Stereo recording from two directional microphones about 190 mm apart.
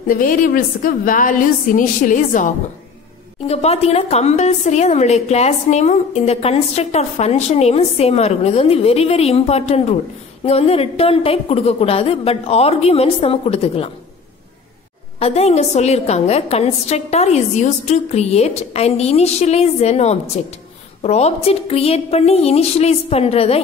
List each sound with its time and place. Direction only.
0.1 s a woman's voice: 45° left (ahead or behind)
15.1 s a woman's voice: 35° left (ahead or behind)